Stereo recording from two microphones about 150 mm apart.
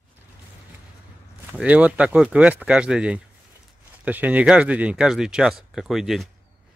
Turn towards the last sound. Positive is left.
turn(degrees=0)  # may be behind; listen again after turning